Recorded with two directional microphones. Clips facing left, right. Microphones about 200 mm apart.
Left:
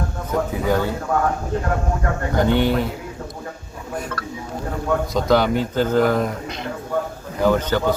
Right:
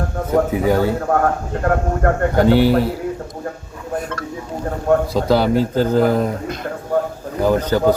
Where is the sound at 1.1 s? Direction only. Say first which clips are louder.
Right 3 dB; 55° right (ahead or behind).